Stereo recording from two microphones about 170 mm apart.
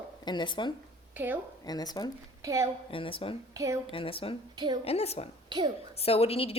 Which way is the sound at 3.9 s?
30° left (ahead or behind).